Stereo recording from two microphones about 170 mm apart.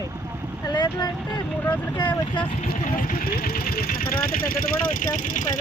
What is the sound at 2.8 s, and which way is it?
Speech, 55° left (ahead or behind).